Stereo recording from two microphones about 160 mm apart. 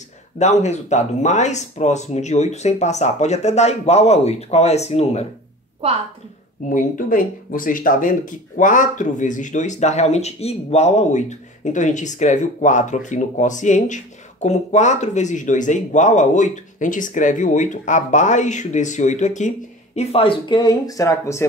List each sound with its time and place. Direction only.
0.4 s speech: 45° left (ahead or behind)
6.7 s speech: 60° left (ahead or behind); by 21.5 s 20° left (ahead or behind)